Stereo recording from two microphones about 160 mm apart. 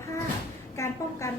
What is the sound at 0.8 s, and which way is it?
Speech, 20° left (ahead or behind).